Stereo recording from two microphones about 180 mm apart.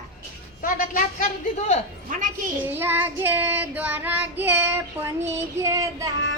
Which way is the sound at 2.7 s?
10° right (ahead or behind).